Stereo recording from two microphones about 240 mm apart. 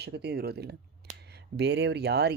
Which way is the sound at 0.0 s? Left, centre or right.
Right.